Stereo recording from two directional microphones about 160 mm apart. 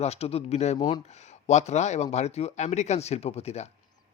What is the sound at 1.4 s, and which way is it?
Speech, 45° left (ahead or behind).